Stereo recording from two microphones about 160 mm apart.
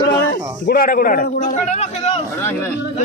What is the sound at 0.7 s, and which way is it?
A man's voice, 65° left (ahead or behind).